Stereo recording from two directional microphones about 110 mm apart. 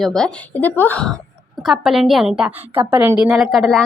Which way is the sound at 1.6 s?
5° right (ahead or behind).